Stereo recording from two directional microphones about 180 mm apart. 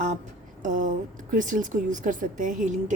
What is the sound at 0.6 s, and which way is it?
A woman's voice, 45° right (ahead or behind).